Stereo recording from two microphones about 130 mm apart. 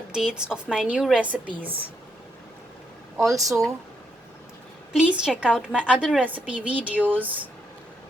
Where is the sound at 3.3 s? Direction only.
25° right (ahead or behind).